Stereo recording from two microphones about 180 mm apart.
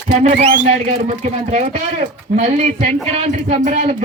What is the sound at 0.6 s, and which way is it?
Speech, 40° right (ahead or behind).